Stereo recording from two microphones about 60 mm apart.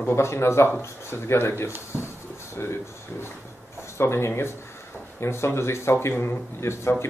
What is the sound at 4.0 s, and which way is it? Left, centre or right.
Speech, left.